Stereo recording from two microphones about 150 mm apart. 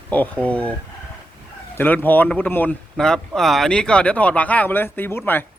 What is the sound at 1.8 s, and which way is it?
Speech, 10° left (ahead or behind).